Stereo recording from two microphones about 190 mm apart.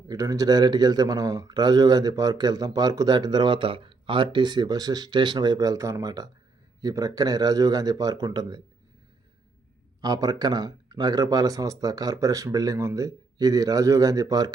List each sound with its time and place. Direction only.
0.1 s a man's voice: 20° right (ahead or behind)
10.0 s a man's voice: 20° right (ahead or behind)